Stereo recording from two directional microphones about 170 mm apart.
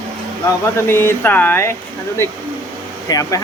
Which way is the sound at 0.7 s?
15° left (ahead or behind).